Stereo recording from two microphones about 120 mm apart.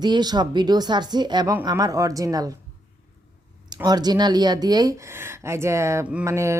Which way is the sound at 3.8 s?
35° right (ahead or behind).